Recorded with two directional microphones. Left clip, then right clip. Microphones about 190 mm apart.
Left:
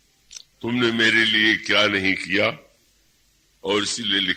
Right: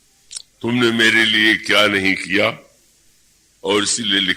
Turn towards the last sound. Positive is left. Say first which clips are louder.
# right 4 dB
turn(degrees=25)  # may be behind; listen again after turning